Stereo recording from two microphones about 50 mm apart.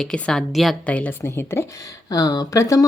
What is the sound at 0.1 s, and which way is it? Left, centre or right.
Speech, centre.